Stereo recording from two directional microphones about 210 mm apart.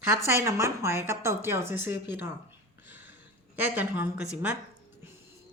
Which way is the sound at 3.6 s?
10° right (ahead or behind).